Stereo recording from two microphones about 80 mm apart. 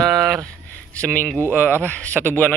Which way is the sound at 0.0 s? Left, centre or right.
Centre.